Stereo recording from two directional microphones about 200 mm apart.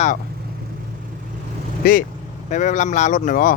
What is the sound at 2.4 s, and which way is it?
Speech, 35° left (ahead or behind).